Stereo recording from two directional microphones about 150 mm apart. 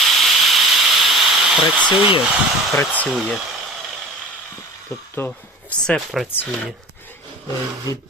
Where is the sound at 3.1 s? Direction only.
Centre (ahead or behind).